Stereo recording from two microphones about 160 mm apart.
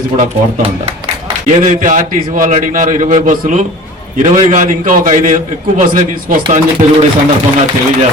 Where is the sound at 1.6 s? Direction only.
55° right (ahead or behind).